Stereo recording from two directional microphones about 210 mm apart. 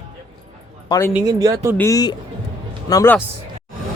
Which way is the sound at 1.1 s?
15° right (ahead or behind).